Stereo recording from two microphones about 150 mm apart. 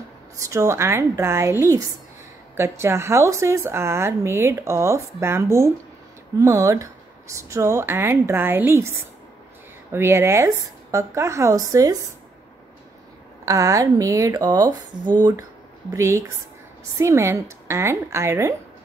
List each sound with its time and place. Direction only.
0.4 s speech: 20° right (ahead or behind)
13.5 s speech: 20° right (ahead or behind)
15.9 s speech: 20° right (ahead or behind)